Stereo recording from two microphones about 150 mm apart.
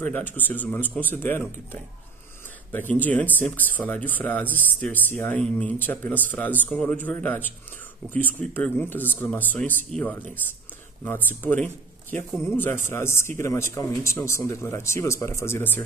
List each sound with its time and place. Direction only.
0.0 s speech: 10° left (ahead or behind)